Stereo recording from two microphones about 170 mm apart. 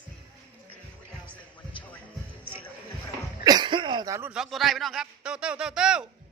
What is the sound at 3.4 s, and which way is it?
Speech, 25° right (ahead or behind).